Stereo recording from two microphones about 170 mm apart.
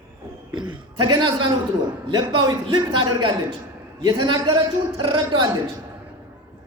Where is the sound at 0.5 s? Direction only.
30° right (ahead or behind).